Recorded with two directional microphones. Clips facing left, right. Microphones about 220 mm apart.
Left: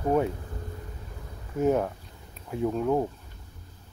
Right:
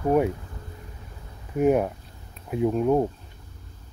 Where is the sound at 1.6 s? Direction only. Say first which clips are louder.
Right 3 dB; 15° right (ahead or behind).